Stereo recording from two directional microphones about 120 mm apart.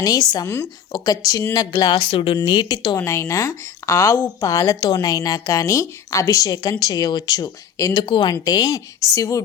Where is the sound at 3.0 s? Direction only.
20° left (ahead or behind).